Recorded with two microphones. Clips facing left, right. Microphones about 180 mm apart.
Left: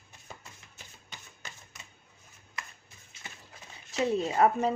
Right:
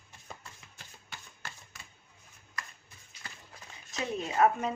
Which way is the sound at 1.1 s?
20° left (ahead or behind).